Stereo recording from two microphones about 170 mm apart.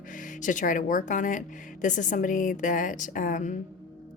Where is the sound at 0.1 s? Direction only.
50° left (ahead or behind).